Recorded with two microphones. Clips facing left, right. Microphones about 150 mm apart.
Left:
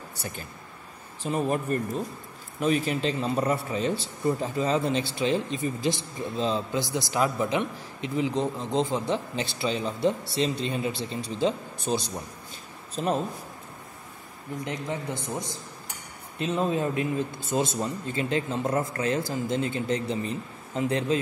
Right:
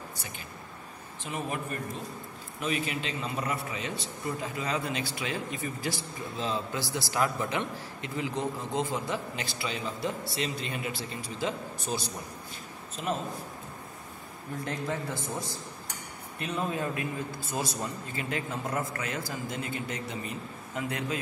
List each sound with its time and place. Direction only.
1.2 s a man's voice: 40° left (ahead or behind)
12.9 s a man's voice: 35° left (ahead or behind)
14.6 s a man's voice: 20° left (ahead or behind)